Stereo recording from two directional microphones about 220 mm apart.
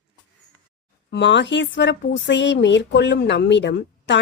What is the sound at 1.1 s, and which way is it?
Speech, 55° left (ahead or behind).